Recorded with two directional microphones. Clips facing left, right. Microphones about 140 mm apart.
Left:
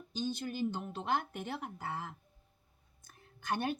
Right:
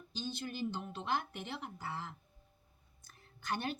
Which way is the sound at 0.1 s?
45° left (ahead or behind).